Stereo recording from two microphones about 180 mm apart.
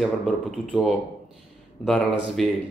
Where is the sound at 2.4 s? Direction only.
Centre (ahead or behind).